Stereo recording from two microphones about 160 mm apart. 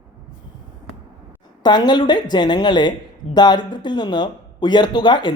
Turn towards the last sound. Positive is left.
turn(degrees=30)  # may be behind; listen again after turning